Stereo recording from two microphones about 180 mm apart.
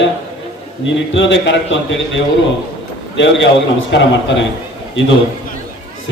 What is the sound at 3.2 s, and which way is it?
A man's voice, 90° left.